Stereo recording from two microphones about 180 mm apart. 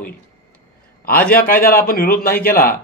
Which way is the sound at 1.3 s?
55° left (ahead or behind).